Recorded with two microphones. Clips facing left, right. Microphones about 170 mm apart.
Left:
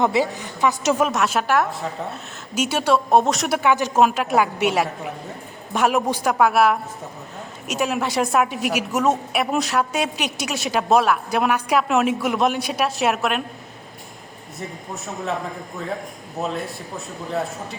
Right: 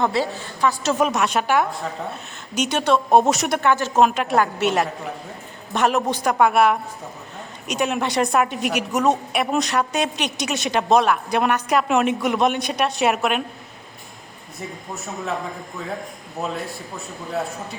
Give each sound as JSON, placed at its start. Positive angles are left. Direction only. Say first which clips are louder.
{"t": 0.0, "sound": "a woman's voice", "louder": "left 2 dB", "side_deg": 15}
{"t": 0.9, "sound": "a woman's voice", "louder": "even", "side_deg": 0}